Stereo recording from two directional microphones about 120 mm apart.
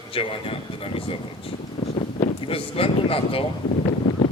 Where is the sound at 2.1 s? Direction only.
50° left (ahead or behind).